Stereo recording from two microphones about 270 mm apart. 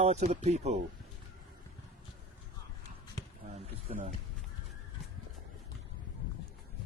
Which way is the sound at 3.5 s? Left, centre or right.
Right.